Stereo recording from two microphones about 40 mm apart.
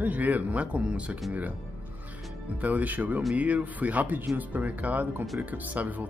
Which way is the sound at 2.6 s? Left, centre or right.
Right.